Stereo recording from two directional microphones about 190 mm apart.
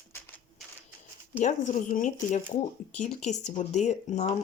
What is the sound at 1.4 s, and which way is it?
Speech, 40° left (ahead or behind).